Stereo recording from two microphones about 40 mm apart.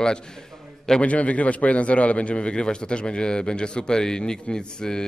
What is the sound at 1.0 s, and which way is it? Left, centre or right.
A man's voice, left.